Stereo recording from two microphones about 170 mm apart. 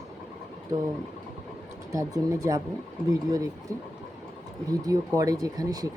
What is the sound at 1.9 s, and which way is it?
Speech, 20° right (ahead or behind).